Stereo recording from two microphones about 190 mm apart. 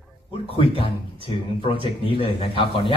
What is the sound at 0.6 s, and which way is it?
Speech, 30° left (ahead or behind).